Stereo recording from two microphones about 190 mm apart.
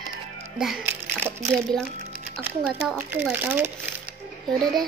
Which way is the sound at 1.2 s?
10° right (ahead or behind).